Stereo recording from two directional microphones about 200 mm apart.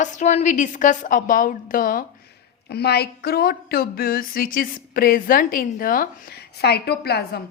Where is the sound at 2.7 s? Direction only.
55° left (ahead or behind).